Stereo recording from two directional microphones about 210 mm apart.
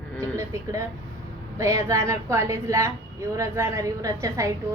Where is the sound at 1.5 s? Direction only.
15° right (ahead or behind).